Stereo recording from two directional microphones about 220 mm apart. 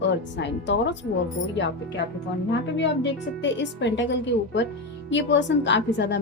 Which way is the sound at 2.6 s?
55° left (ahead or behind).